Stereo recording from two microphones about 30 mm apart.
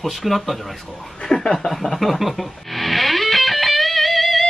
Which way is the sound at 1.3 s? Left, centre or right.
Centre.